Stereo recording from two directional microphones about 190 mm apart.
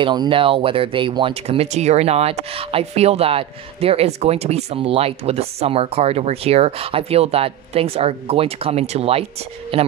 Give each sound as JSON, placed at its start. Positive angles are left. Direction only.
{"t": 0.0, "sound": "speech", "side_deg": -25}